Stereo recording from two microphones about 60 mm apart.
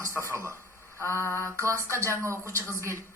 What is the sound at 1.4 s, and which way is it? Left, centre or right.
Mantra, right.